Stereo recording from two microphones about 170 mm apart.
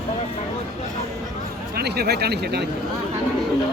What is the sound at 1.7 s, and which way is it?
Speech, 70° right (ahead or behind).